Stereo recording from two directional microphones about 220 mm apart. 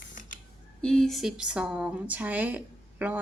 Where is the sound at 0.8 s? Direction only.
5° left (ahead or behind).